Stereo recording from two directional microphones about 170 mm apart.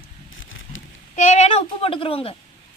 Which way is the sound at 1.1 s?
45° left (ahead or behind).